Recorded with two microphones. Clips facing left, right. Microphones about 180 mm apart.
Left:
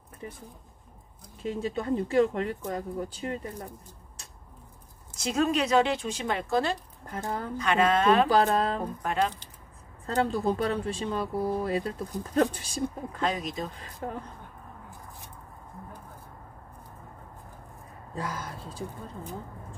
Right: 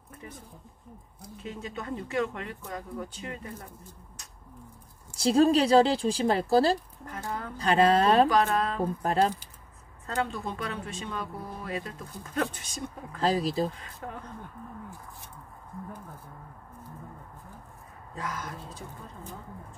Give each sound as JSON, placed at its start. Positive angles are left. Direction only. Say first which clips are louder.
{"t": 1.4, "sound": "speech", "louder": "left 7 dB", "side_deg": 30}
{"t": 5.1, "sound": "speech", "louder": "right 5 dB", "side_deg": -35}
{"t": 7.1, "sound": "speech", "louder": "left 3 dB", "side_deg": 30}
{"t": 7.5, "sound": "speech", "louder": "right 2 dB", "side_deg": -35}
{"t": 8.3, "sound": "speech", "louder": "left 2 dB", "side_deg": 35}
{"t": 9.0, "sound": "speech", "louder": "right 3 dB", "side_deg": -35}
{"t": 10.0, "sound": "speech", "louder": "left 5 dB", "side_deg": 35}
{"t": 13.2, "sound": "speech", "louder": "right 5 dB", "side_deg": -35}
{"t": 14.0, "sound": "speech", "louder": "left 5 dB", "side_deg": 25}
{"t": 18.1, "sound": "speech", "louder": "left 1 dB", "side_deg": 30}